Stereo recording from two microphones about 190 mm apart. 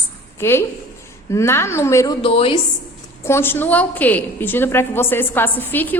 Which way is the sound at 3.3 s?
10° left (ahead or behind).